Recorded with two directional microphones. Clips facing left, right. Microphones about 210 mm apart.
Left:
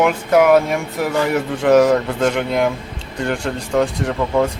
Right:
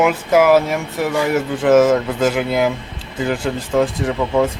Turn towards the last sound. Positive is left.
turn(degrees=0)  # may be behind; listen again after turning